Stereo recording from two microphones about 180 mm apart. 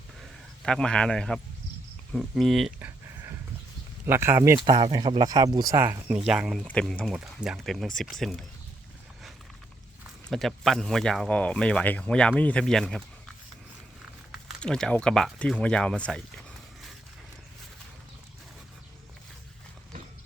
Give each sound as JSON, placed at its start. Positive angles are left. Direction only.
{"t": 0.2, "sound": "a sound", "side_deg": 5}
{"t": 2.1, "sound": "speech", "side_deg": 0}
{"t": 10.2, "sound": "speech", "side_deg": 0}
{"t": 14.4, "sound": "speech", "side_deg": 5}